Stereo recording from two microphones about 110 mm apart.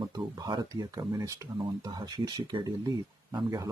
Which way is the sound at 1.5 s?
40° right (ahead or behind).